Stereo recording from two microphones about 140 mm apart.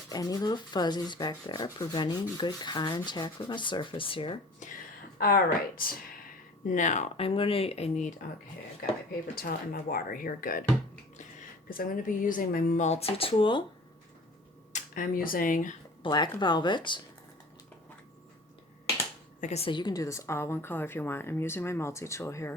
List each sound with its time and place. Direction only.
0.1 s speech: 25° left (ahead or behind)
4.6 s speech: 60° left (ahead or behind)
5.1 s speech: 90° left
6.7 s speech: 60° left (ahead or behind)
7.2 s speech: 40° left (ahead or behind)
8.8 s speech: 90° left
11.2 s speech: 75° left (ahead or behind); by 13.7 s 35° left (ahead or behind)
14.7 s speech: 65° left (ahead or behind)
16.0 s speech: 35° left (ahead or behind)
19.4 s speech: 50° left (ahead or behind)
19.7 s speech: 30° left (ahead or behind)